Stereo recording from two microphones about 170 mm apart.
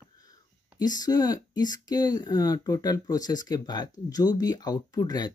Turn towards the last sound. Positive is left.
turn(degrees=25)  # may be behind; listen again after turning